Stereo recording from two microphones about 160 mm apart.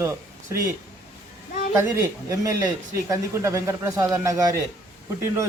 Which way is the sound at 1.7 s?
15° right (ahead or behind).